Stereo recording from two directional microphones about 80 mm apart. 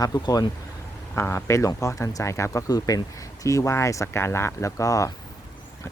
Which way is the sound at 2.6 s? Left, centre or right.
Left.